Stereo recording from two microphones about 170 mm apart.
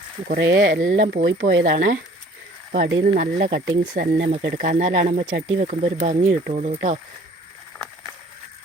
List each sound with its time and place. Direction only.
0.3 s speech: 80° right
0.8 s speech: 50° right (ahead or behind); by 1.8 s 80° right
2.7 s speech: 60° right (ahead or behind)
4.5 s speech: 45° right (ahead or behind)